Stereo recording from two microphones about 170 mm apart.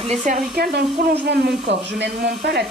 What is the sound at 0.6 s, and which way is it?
Speech, 70° right (ahead or behind).